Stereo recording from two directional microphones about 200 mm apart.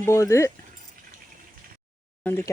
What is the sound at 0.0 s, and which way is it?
Speech, 15° left (ahead or behind).